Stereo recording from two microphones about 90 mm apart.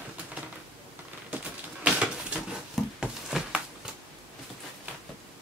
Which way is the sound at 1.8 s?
15° right (ahead or behind).